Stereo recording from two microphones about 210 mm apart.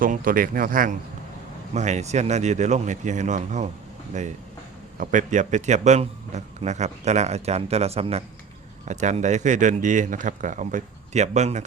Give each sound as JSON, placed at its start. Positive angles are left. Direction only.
{"t": 0.0, "sound": "a man's voice", "side_deg": -40}
{"t": 4.9, "sound": "a man's voice", "side_deg": -35}